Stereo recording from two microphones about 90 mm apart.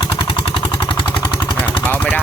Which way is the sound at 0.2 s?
70° left (ahead or behind).